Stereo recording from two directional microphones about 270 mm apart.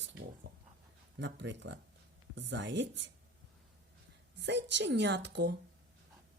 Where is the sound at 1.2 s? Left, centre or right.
Right.